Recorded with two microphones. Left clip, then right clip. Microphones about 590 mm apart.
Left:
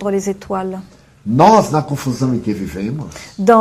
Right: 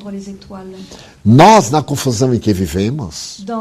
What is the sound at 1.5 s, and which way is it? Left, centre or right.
Speech, right.